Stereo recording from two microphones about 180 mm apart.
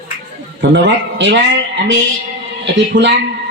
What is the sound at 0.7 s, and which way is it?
A woman's voice, 75° right (ahead or behind).